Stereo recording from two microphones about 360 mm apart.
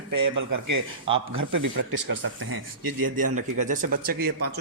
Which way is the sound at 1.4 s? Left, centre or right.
Right.